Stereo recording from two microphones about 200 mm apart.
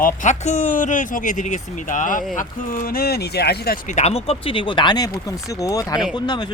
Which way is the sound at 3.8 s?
35° left (ahead or behind).